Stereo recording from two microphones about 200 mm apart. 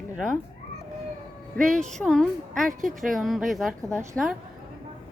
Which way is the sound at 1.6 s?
5° left (ahead or behind).